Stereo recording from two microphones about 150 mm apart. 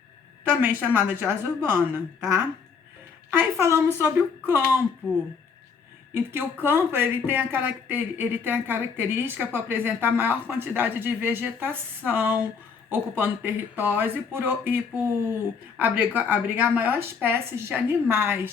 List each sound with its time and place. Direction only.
0.4 s speech: 10° right (ahead or behind)
3.2 s speech: 15° right (ahead or behind)
6.1 s speech: 15° right (ahead or behind)